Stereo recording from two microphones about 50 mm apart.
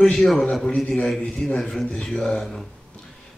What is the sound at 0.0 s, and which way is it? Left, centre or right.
Speech, centre.